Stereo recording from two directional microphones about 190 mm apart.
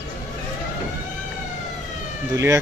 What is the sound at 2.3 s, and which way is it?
Speech, 15° right (ahead or behind).